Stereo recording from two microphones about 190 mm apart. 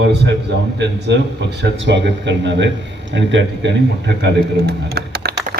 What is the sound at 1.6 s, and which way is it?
A man's voice, 65° right (ahead or behind).